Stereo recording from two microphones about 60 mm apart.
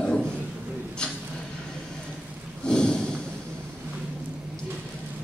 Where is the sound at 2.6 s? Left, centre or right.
Centre.